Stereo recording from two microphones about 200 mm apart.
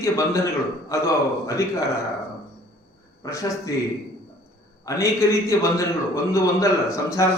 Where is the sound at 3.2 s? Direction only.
15° left (ahead or behind).